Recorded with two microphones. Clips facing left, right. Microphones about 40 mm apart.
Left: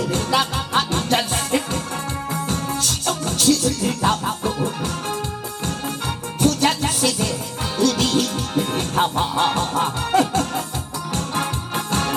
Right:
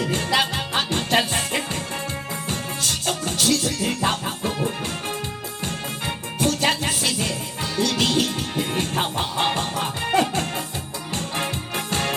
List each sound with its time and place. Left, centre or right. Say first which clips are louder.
0.0 s music: left 1 dB; right